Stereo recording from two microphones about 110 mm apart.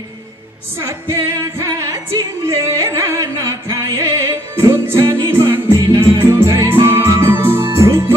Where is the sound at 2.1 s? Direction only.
25° right (ahead or behind).